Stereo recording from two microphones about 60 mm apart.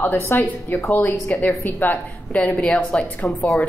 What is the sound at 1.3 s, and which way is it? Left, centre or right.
Speech, left.